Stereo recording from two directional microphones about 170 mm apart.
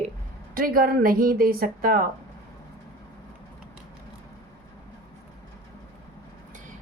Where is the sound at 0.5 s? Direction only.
55° right (ahead or behind).